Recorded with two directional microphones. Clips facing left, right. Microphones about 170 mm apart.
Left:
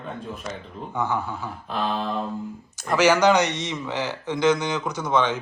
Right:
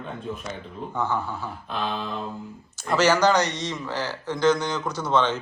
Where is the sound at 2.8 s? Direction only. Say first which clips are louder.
Left 2 dB; 15° left (ahead or behind).